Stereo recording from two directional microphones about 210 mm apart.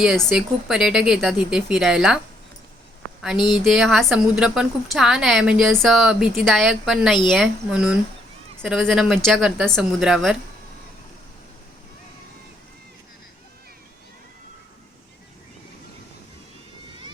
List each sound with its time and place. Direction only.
0.0 s a woman's voice: centre (ahead or behind)
3.3 s speech: 20° left (ahead or behind)
3.6 s a woman's voice: centre (ahead or behind)